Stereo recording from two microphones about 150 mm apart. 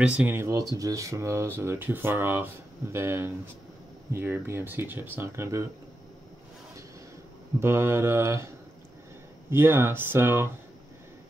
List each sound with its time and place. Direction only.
0.0 s speech: 10° right (ahead or behind)
7.6 s speech: 15° right (ahead or behind)
9.5 s speech: 15° right (ahead or behind)